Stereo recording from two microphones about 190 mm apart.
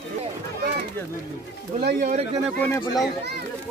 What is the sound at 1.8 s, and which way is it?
Speech, 55° right (ahead or behind).